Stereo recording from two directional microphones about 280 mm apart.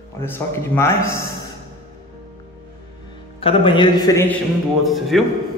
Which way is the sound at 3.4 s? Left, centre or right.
Centre.